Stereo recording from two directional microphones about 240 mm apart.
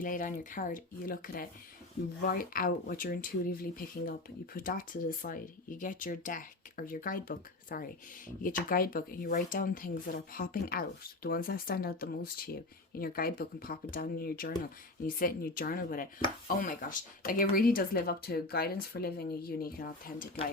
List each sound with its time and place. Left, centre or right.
0.0 s speech: left